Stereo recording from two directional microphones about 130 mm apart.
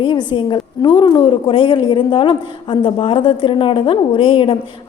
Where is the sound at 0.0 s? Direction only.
35° left (ahead or behind).